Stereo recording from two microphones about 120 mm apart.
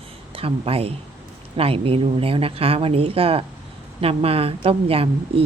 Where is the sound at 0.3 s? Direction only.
50° right (ahead or behind).